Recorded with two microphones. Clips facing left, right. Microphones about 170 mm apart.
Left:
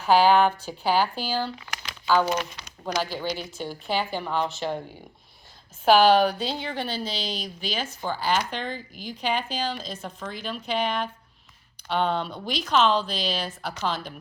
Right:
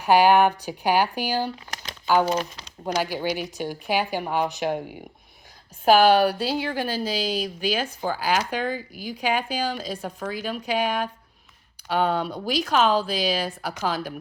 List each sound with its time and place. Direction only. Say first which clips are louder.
0.0 s speech: right 1 dB; 15° right (ahead or behind)
2.3 s speech: right 2 dB; 30° right (ahead or behind)
2.8 s speech: right 3 dB; 15° right (ahead or behind)
6.1 s speech: right 1 dB; 10° right (ahead or behind)